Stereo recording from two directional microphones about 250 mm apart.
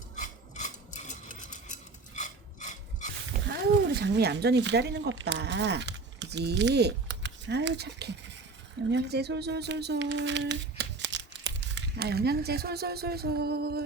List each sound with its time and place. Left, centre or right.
0.2 s filing: left
3.4 s speech: right